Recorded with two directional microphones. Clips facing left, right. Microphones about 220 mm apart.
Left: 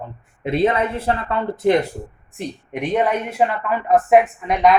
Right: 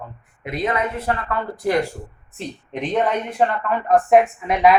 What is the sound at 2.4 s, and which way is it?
A woman's voice, 10° left (ahead or behind).